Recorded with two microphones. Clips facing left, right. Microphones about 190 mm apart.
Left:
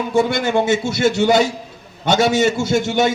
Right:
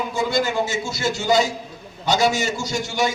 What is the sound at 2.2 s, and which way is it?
Speech, 25° left (ahead or behind).